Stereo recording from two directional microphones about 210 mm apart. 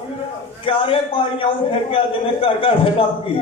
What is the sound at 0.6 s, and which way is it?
Speech, 25° left (ahead or behind).